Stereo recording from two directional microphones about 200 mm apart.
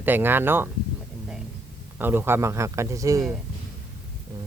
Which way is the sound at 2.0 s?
10° right (ahead or behind).